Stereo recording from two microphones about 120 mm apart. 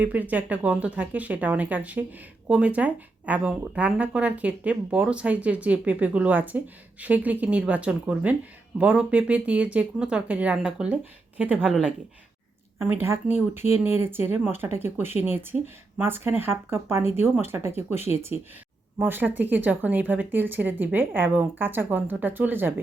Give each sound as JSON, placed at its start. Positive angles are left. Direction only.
{"t": 0.0, "sound": "speech", "side_deg": -15}
{"t": 12.8, "sound": "speech", "side_deg": -20}